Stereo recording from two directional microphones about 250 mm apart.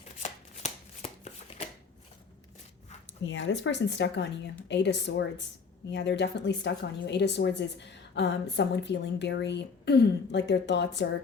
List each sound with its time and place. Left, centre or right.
0.2 s shuffling cards: left
3.2 s a woman's voice: left